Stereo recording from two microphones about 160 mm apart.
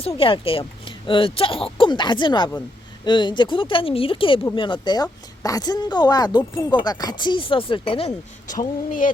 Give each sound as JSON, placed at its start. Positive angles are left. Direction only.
{"t": 0.2, "sound": "speech", "side_deg": 35}
{"t": 8.4, "sound": "speech", "side_deg": 55}